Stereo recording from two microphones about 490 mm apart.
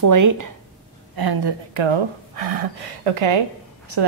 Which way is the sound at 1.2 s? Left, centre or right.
Right.